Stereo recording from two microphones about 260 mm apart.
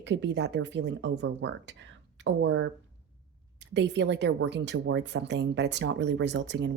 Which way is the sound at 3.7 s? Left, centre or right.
Right.